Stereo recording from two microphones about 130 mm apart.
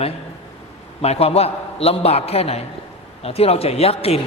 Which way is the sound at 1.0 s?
50° left (ahead or behind).